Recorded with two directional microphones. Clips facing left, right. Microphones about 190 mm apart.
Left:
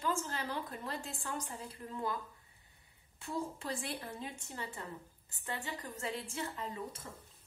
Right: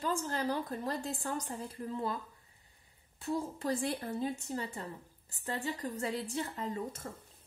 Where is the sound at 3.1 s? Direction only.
35° right (ahead or behind).